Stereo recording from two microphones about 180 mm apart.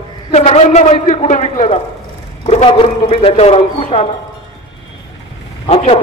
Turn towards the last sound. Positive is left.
turn(degrees=35)  # may be behind; listen again after turning